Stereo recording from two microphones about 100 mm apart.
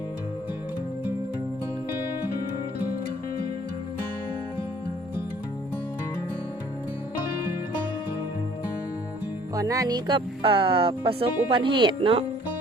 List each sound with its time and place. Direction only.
9.6 s music: 35° right (ahead or behind)
10.1 s speech: 60° right (ahead or behind)